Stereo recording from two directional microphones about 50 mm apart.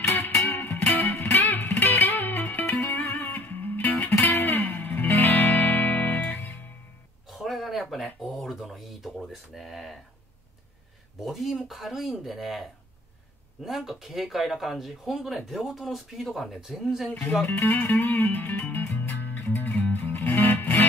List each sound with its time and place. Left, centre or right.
0.5 s music: left
7.2 s a sound: centre
11.1 s speech: centre
13.7 s speech: centre
17.4 s speech: left
17.7 s music: left